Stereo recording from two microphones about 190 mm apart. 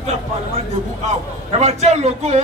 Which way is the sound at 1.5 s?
35° right (ahead or behind).